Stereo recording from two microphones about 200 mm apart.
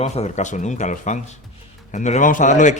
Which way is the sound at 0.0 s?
35° left (ahead or behind).